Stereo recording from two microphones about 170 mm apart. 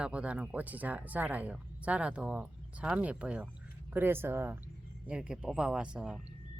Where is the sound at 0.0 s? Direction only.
5° right (ahead or behind).